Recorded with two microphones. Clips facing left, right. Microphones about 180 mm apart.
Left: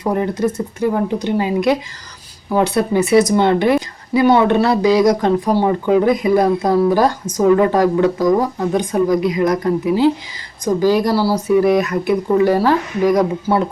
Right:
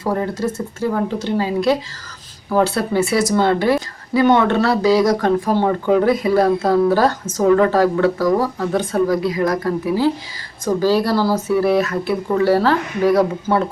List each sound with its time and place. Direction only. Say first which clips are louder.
0.0 s a woman's voice: left 3 dB; 20° left (ahead or behind)